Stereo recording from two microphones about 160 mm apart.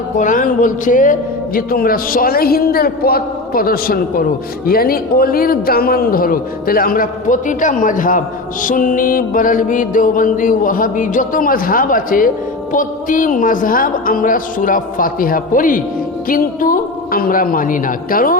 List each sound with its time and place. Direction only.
0.2 s music: 55° left (ahead or behind)